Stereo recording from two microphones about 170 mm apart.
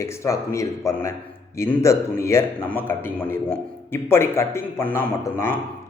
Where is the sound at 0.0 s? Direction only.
15° left (ahead or behind).